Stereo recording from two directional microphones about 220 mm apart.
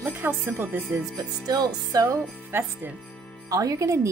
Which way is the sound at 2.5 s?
10° right (ahead or behind).